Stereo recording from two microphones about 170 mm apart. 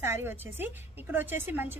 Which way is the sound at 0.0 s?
15° right (ahead or behind).